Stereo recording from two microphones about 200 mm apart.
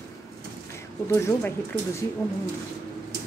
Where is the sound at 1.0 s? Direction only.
15° left (ahead or behind).